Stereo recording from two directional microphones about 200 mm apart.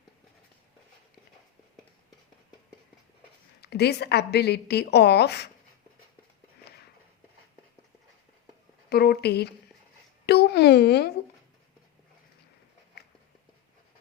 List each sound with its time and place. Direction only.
3.6 s a woman's voice: 55° left (ahead or behind)
8.9 s speech: 50° left (ahead or behind)
10.2 s a sound: 55° left (ahead or behind)